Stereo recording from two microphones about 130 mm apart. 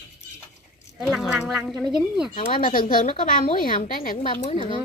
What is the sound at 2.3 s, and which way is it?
Speech, 90° left.